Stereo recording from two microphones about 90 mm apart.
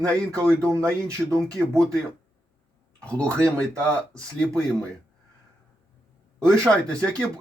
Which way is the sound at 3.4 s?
35° right (ahead or behind).